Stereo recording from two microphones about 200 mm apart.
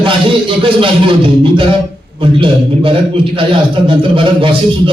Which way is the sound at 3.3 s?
25° right (ahead or behind).